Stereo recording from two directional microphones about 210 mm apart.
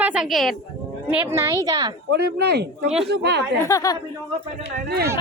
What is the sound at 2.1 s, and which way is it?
Speech, 50° right (ahead or behind).